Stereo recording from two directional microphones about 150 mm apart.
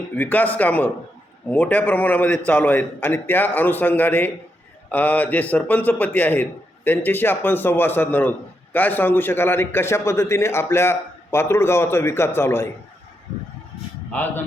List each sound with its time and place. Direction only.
0.2 s a man's voice: 10° left (ahead or behind)
14.1 s a man's voice: 10° left (ahead or behind)